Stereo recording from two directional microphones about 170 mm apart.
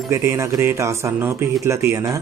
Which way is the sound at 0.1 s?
15° right (ahead or behind).